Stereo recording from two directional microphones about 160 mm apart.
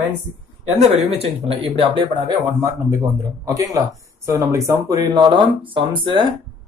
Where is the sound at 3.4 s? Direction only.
20° right (ahead or behind).